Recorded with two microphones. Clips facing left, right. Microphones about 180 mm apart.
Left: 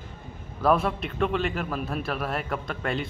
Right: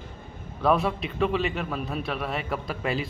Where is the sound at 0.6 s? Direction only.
Centre (ahead or behind).